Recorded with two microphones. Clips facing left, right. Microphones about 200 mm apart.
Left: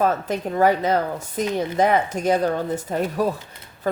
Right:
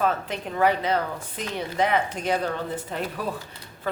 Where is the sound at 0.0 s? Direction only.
40° left (ahead or behind).